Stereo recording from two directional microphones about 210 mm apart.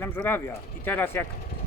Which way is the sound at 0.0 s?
10° left (ahead or behind).